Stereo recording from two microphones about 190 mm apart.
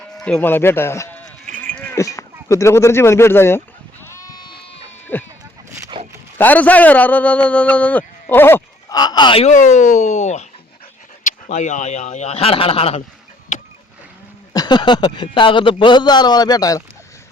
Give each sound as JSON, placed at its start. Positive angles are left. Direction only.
{"t": 0.3, "sound": "a man's voice", "side_deg": 10}
{"t": 1.5, "sound": "cowbell", "side_deg": -45}
{"t": 1.7, "sound": "speech", "side_deg": 10}
{"t": 4.0, "sound": "goat", "side_deg": 15}
{"t": 5.1, "sound": "a man's voice", "side_deg": 10}
{"t": 6.0, "sound": "zipper", "side_deg": -30}
{"t": 6.4, "sound": "a man's voice", "side_deg": 10}
{"t": 9.5, "sound": "speech", "side_deg": 40}
{"t": 14.5, "sound": "a man's voice", "side_deg": 20}